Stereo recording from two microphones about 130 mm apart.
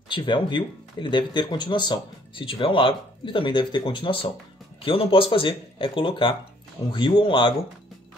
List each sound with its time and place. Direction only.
0.1 s speech: 40° left (ahead or behind)